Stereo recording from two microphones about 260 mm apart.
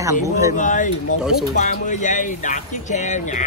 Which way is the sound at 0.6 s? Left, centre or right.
Left.